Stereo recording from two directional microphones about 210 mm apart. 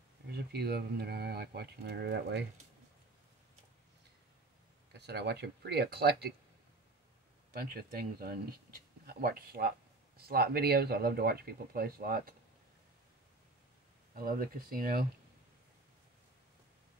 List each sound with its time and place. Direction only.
0.3 s speech: 50° right (ahead or behind)
4.9 s speech: 55° right (ahead or behind)
8.2 s speech: 45° right (ahead or behind)
14.1 s speech: 45° right (ahead or behind)